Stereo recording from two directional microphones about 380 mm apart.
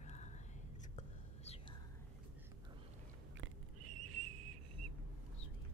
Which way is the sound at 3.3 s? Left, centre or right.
Right.